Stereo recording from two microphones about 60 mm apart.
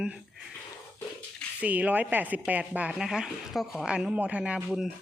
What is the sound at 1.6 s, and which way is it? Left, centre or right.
Speech, right.